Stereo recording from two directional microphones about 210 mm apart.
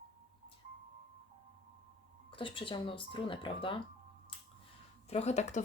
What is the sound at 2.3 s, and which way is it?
Speech, 25° left (ahead or behind).